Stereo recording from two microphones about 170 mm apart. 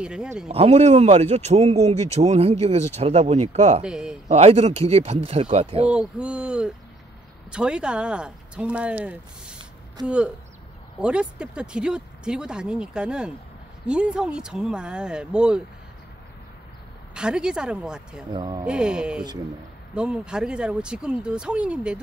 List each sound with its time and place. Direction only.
0.0 s speech: 5° right (ahead or behind)
0.5 s speech: 35° right (ahead or behind)
3.8 s speech: 5° right (ahead or behind)
4.3 s speech: 35° right (ahead or behind)
5.9 s speech: 5° right (ahead or behind)
17.1 s speech: 5° right (ahead or behind)
18.3 s speech: 25° right (ahead or behind)
18.7 s speech: 5° right (ahead or behind)